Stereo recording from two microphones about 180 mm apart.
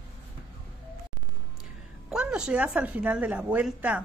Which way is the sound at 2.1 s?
5° right (ahead or behind).